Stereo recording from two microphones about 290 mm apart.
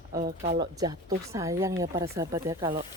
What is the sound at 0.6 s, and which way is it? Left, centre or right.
Speech, centre.